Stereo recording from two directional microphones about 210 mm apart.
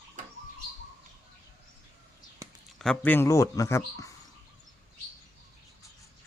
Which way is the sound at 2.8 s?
5° left (ahead or behind).